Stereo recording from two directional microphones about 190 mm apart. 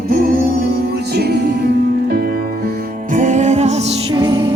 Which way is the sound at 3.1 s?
40° right (ahead or behind).